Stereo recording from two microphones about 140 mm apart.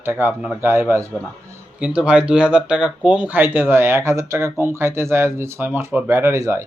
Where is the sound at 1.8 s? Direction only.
5° right (ahead or behind).